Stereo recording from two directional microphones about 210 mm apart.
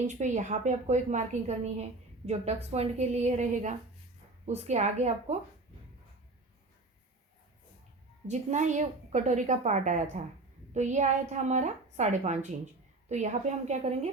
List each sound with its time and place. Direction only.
0.1 s a woman's voice: 35° right (ahead or behind)
8.3 s a woman's voice: 35° right (ahead or behind)